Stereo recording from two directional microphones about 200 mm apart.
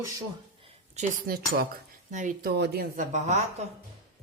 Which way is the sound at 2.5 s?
55° right (ahead or behind).